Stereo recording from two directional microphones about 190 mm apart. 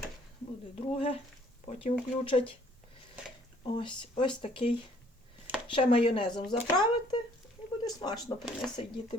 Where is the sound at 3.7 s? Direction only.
25° left (ahead or behind).